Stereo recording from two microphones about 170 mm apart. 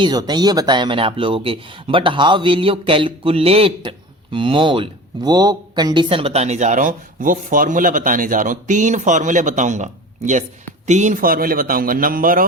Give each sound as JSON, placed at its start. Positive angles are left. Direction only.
{"t": 0.0, "sound": "a man's voice", "side_deg": -25}